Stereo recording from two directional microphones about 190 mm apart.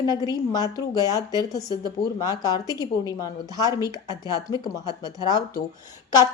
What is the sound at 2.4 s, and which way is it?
A woman's voice, 20° left (ahead or behind).